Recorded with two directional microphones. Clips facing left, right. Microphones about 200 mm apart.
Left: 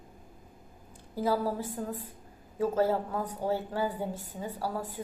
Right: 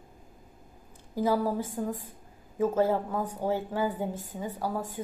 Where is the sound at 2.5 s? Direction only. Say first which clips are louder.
Right 2 dB; 15° right (ahead or behind).